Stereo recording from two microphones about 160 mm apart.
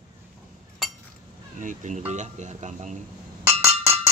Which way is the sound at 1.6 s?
50° right (ahead or behind).